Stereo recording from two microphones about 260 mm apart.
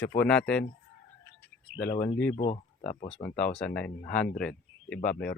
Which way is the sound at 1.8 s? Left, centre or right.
Left.